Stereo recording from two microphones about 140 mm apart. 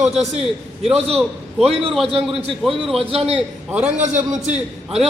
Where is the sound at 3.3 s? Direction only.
10° right (ahead or behind).